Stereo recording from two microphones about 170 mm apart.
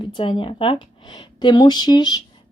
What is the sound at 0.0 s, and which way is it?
A woman's voice, 30° left (ahead or behind).